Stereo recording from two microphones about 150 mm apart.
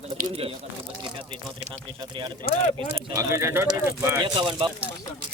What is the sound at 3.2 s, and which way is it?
Speech, 20° right (ahead or behind).